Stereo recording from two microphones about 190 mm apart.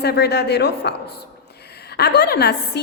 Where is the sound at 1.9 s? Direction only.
60° left (ahead or behind).